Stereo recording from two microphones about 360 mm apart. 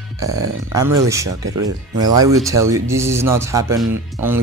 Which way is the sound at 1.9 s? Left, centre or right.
Centre.